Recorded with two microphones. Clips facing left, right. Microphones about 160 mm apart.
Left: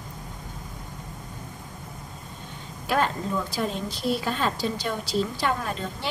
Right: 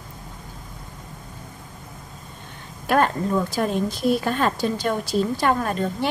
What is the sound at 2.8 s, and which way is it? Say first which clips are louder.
A woman's voice: right 5 dB; 55° right (ahead or behind).